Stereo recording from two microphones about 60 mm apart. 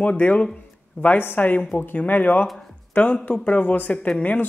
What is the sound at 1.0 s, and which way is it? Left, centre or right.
Speech, left.